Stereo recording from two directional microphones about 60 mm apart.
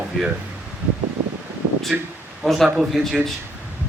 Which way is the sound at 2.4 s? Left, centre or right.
Centre.